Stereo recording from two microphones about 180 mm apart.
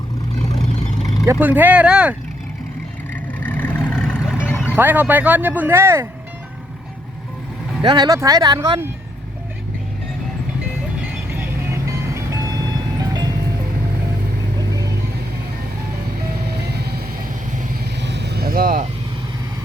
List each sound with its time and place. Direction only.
0.5 s vehicle: 20° left (ahead or behind)
1.3 s speech: 10° right (ahead or behind)
3.3 s vehicle: 10° left (ahead or behind)
4.7 s speech: 10° right (ahead or behind)
7.8 s speech: 25° right (ahead or behind)
11.1 s music: 10° right (ahead or behind)
13.0 s vehicle: 20° right (ahead or behind)
16.5 s vehicle: 65° right (ahead or behind)
18.0 s vehicle: 70° right (ahead or behind); by 18.8 s 55° right (ahead or behind)